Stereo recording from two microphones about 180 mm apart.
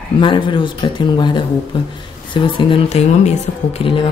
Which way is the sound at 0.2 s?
25° left (ahead or behind).